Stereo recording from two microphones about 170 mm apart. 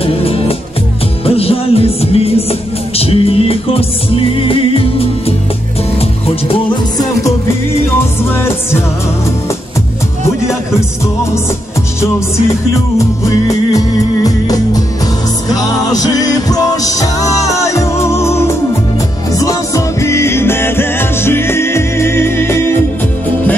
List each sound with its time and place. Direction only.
0.0 s music: 35° left (ahead or behind)
8.3 s music: 15° left (ahead or behind)
12.9 s music: 20° left (ahead or behind)